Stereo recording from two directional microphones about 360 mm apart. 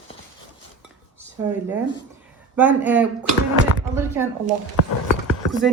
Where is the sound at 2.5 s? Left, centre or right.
Centre.